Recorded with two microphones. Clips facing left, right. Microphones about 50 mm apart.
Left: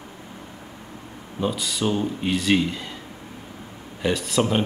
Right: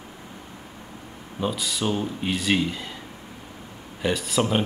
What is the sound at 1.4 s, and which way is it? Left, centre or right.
Speech, centre.